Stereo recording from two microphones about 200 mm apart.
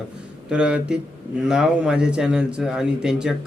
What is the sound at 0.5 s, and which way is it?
Speech, 5° right (ahead or behind).